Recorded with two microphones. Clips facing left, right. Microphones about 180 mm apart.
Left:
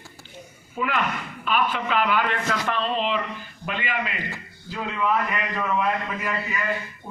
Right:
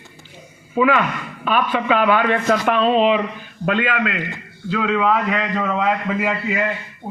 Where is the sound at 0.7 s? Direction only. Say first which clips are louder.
Right 10 dB; 75° right (ahead or behind).